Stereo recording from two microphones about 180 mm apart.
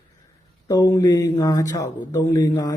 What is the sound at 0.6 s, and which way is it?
Speech, 20° left (ahead or behind).